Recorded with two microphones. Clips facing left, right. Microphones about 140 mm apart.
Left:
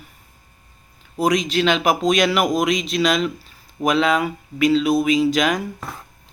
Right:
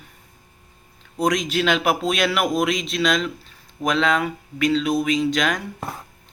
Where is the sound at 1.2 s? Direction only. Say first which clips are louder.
Left 2 dB; 5° left (ahead or behind).